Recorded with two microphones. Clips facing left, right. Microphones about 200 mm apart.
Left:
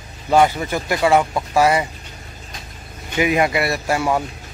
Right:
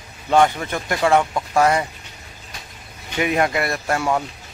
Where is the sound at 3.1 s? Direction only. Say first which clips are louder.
Left 2 dB; 5° left (ahead or behind).